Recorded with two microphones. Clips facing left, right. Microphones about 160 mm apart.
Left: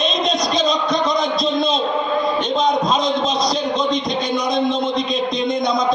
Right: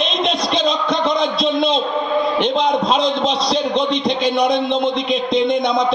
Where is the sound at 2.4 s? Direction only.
65° right (ahead or behind).